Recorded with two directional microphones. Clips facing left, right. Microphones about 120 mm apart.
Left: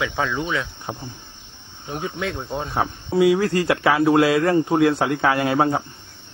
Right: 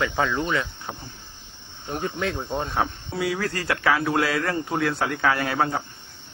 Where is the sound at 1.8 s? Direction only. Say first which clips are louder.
Even; centre (ahead or behind).